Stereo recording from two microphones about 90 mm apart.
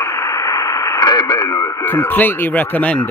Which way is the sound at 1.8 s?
20° left (ahead or behind).